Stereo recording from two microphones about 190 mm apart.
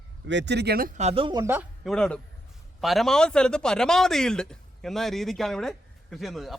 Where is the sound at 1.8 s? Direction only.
5° left (ahead or behind).